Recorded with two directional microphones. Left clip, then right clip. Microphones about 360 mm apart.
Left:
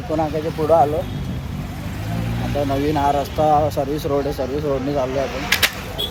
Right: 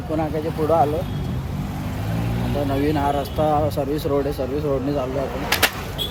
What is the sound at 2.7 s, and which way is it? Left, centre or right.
Speech, centre.